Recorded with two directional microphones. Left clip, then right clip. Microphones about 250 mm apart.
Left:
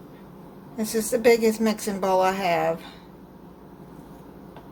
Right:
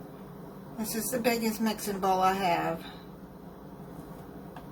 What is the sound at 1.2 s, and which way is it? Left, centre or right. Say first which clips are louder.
A woman's voice: left 11 dB; left.